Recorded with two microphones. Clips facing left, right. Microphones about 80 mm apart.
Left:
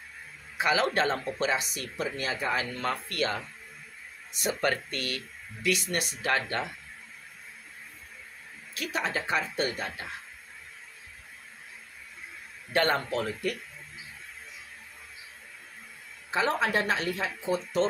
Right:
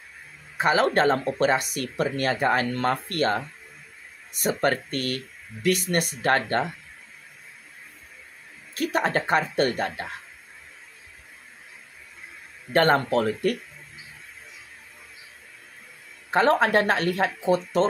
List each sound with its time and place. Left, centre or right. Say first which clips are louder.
0.6 s speech: right 5 dB; right
8.7 s speech: right 7 dB; right
12.7 s speech: right 7 dB; right
16.3 s speech: right 7 dB; right